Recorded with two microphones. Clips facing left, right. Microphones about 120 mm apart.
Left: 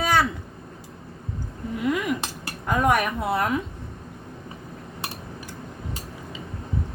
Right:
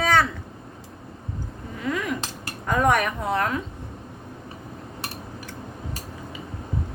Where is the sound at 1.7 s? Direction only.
10° left (ahead or behind).